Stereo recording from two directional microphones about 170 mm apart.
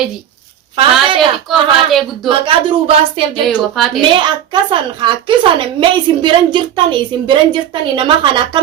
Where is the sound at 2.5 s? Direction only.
30° right (ahead or behind).